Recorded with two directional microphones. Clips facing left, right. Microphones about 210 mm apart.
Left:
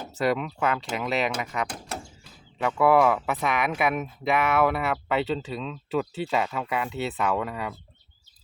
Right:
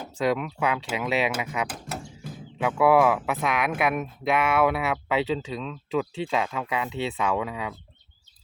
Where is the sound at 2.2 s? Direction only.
50° right (ahead or behind).